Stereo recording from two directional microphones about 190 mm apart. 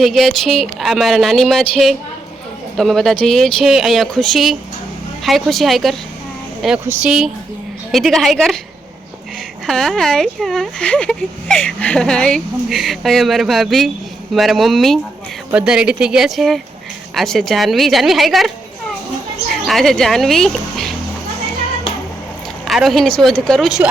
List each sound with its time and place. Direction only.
0.0 s speech: centre (ahead or behind)
9.6 s speech: centre (ahead or behind)
19.6 s speech: centre (ahead or behind)
22.6 s speech: centre (ahead or behind)